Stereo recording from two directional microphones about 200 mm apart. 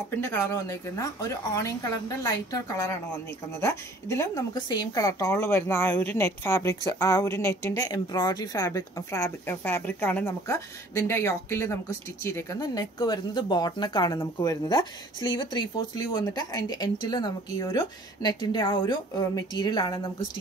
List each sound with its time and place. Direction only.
0.1 s a woman's voice: 15° left (ahead or behind)